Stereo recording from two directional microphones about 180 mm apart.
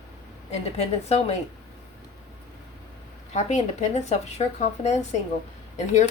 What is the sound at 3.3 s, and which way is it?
Speech, 40° left (ahead or behind).